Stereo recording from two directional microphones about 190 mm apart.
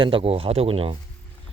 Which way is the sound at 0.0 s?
30° right (ahead or behind).